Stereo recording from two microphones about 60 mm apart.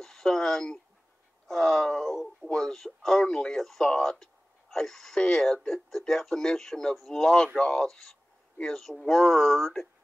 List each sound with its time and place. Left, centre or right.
0.0 s speech: centre